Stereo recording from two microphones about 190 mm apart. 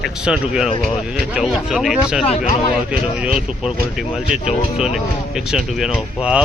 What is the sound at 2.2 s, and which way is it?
Speech, 35° left (ahead or behind).